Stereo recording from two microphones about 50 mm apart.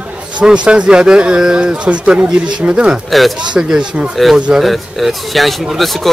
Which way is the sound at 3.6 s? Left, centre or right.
Centre.